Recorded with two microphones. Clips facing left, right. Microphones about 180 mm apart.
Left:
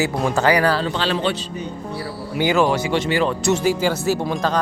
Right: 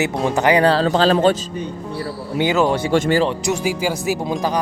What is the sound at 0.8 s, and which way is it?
Speech, 40° right (ahead or behind).